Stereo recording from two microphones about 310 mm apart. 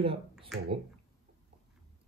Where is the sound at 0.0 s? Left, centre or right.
Centre.